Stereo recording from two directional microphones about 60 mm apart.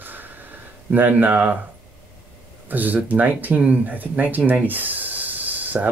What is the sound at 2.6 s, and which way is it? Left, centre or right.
Speech, right.